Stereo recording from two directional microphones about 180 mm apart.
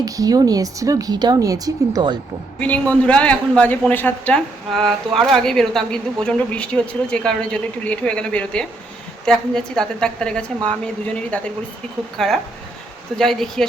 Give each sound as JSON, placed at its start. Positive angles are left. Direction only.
{"t": 0.0, "sound": "a woman's voice", "side_deg": -20}
{"t": 2.6, "sound": "a man's voice", "side_deg": 10}